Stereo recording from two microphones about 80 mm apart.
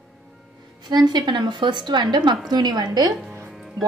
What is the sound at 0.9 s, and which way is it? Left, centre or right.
A woman's voice, right.